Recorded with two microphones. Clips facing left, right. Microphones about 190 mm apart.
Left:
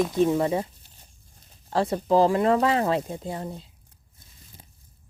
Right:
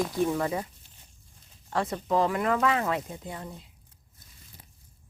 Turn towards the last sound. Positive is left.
turn(degrees=30)  # may be behind; listen again after turning